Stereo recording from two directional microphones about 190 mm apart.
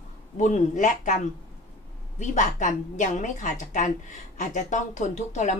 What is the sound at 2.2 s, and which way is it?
A woman's voice, 40° left (ahead or behind).